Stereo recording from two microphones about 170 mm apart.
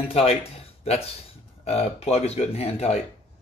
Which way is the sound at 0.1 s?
35° left (ahead or behind).